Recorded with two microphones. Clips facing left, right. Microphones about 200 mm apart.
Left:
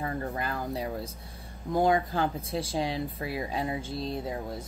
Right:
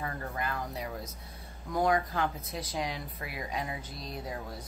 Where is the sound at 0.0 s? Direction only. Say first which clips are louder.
Left 4 dB; 30° left (ahead or behind).